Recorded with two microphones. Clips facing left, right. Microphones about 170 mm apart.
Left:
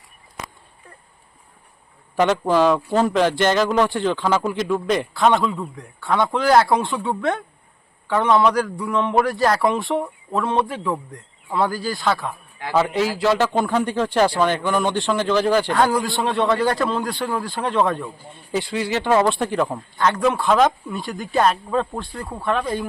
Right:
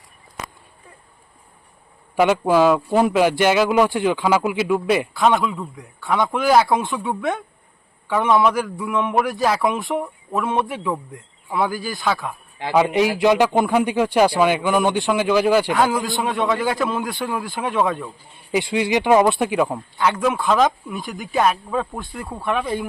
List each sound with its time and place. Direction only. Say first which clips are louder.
2.1 s a man's voice: right 2 dB; 10° right (ahead or behind)
10.4 s a man's voice: left 1 dB; 20° right (ahead or behind)
10.9 s speech: even; 5° right (ahead or behind)
12.7 s a man's voice: right 3 dB; 15° right (ahead or behind)